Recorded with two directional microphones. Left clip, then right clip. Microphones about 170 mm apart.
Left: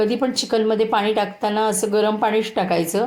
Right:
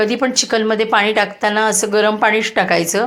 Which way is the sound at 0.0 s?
5° right (ahead or behind).